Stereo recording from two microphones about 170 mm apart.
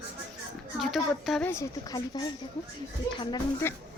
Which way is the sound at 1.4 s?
20° left (ahead or behind).